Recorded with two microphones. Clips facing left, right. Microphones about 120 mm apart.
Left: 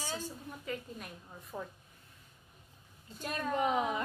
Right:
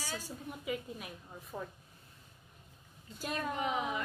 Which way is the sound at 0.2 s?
10° right (ahead or behind).